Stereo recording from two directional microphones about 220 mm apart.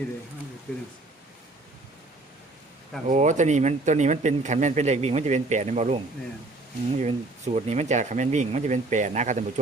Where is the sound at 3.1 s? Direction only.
35° right (ahead or behind).